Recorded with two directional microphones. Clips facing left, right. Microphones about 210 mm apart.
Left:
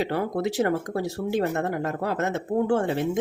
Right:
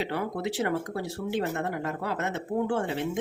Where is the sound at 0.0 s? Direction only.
45° left (ahead or behind).